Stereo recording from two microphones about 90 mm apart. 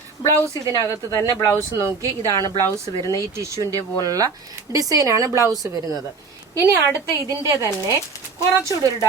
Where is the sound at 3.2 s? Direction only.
35° right (ahead or behind).